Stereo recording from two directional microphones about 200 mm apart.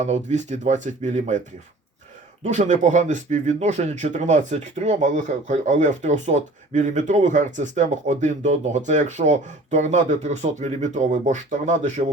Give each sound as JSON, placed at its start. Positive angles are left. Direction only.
{"t": 0.0, "sound": "speech", "side_deg": -35}
{"t": 2.4, "sound": "speech", "side_deg": -35}